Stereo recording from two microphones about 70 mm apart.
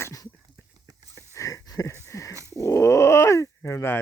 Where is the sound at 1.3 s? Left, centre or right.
Left.